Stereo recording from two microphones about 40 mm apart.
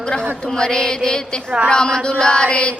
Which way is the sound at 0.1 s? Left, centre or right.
Centre.